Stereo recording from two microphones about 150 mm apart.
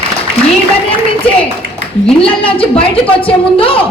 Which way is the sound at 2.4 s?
35° left (ahead or behind).